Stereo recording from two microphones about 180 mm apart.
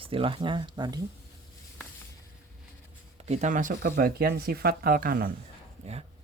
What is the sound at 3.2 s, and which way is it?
Speech, 35° right (ahead or behind).